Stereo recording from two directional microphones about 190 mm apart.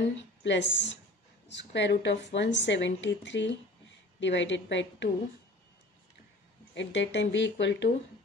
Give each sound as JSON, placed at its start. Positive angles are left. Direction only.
{"t": 0.4, "sound": "a woman's voice", "side_deg": 70}
{"t": 6.7, "sound": "a woman's voice", "side_deg": 70}